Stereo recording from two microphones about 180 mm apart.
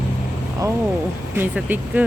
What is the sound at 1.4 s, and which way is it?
Speech, 10° right (ahead or behind).